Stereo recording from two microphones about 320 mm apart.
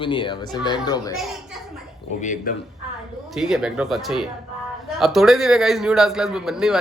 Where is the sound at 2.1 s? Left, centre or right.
Left.